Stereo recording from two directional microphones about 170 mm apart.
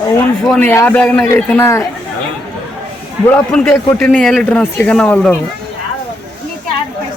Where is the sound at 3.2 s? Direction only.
10° left (ahead or behind).